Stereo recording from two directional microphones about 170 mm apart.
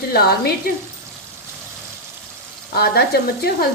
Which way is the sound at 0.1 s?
65° left (ahead or behind).